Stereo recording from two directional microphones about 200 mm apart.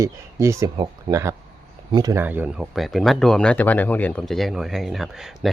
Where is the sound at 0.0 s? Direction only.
15° right (ahead or behind).